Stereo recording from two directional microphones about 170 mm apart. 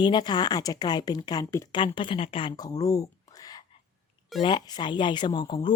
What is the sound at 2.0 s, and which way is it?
A woman's voice, 30° left (ahead or behind).